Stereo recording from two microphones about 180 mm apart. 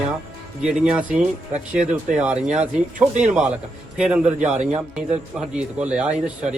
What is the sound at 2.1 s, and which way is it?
Speech, 5° right (ahead or behind).